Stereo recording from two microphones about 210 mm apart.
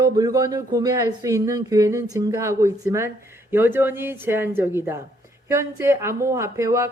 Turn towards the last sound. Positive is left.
turn(degrees=-15)  # may be behind; listen again after turning